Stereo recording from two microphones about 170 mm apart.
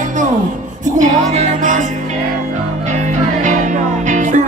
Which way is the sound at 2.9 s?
45° right (ahead or behind).